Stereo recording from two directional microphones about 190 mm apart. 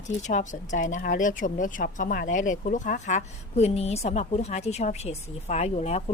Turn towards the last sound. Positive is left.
turn(degrees=35)  # may be behind; listen again after turning